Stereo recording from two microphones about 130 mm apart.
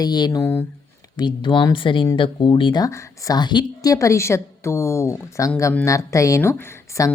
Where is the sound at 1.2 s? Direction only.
35° left (ahead or behind).